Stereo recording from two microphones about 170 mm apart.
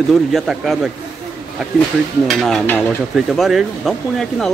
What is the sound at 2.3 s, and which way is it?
Speech, centre (ahead or behind).